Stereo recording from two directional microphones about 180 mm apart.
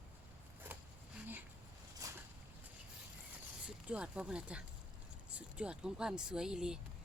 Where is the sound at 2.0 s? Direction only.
20° right (ahead or behind).